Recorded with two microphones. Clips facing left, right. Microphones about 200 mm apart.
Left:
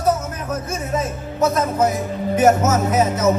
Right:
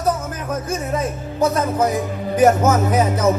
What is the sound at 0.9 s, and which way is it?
Speech, 30° right (ahead or behind).